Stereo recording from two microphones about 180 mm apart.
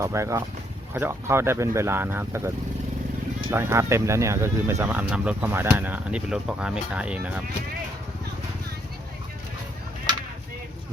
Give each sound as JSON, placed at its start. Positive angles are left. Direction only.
{"t": 0.0, "sound": "speech", "side_deg": -15}
{"t": 3.5, "sound": "speech", "side_deg": -15}